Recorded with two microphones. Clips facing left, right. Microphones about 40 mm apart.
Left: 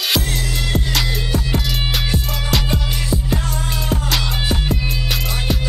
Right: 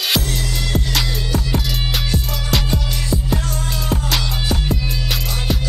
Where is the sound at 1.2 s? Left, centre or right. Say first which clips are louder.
Even; centre.